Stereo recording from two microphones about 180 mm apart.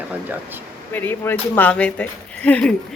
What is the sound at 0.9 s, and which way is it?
Speech, 10° left (ahead or behind).